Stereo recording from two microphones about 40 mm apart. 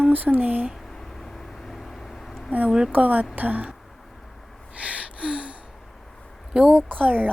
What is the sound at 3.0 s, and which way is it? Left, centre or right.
Speech, right.